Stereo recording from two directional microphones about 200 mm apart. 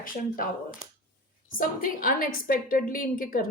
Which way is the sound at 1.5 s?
45° left (ahead or behind).